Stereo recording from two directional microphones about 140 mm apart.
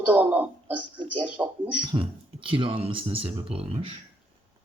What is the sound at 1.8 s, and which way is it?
Speech, 35° right (ahead or behind).